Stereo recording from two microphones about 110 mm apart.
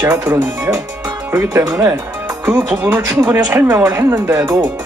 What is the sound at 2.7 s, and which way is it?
Speech, 15° right (ahead or behind).